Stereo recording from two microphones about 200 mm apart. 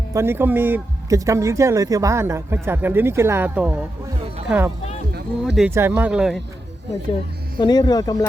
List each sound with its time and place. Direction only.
0.1 s speech: 10° right (ahead or behind)
7.6 s speech: 20° left (ahead or behind)